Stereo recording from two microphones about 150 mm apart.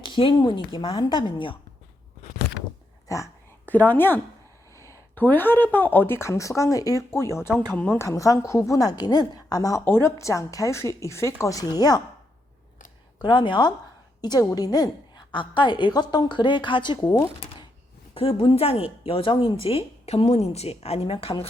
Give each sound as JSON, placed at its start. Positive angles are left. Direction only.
{"t": 0.0, "sound": "speech", "side_deg": 35}
{"t": 3.1, "sound": "a woman's voice", "side_deg": 20}
{"t": 13.2, "sound": "a woman's voice", "side_deg": 30}
{"t": 18.1, "sound": "speech", "side_deg": 35}